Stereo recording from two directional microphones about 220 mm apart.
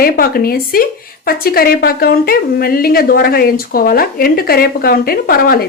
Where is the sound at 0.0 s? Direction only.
40° left (ahead or behind).